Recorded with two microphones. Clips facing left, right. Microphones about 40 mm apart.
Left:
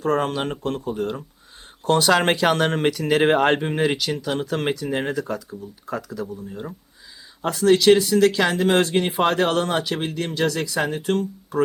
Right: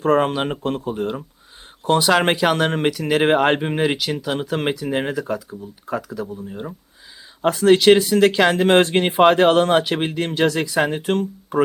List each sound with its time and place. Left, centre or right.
0.0 s speech: right
7.4 s speech: right